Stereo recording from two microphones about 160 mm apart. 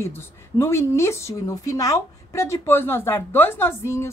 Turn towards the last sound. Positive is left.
turn(degrees=15)  # may be behind; listen again after turning